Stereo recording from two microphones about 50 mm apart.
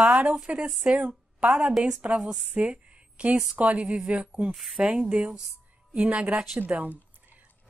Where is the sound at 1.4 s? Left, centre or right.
Centre.